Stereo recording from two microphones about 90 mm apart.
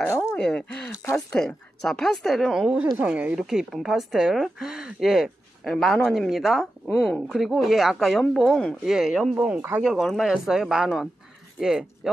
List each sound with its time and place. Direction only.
0.4 s speech: 10° left (ahead or behind)
3.0 s speech: 15° right (ahead or behind)
3.3 s speech: 5° right (ahead or behind)
9.8 s speech: centre (ahead or behind)